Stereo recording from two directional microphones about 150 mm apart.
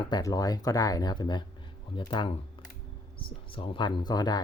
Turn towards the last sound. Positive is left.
turn(degrees=25)  # may be behind; listen again after turning